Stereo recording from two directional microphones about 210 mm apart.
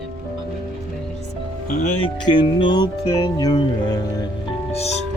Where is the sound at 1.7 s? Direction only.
35° left (ahead or behind).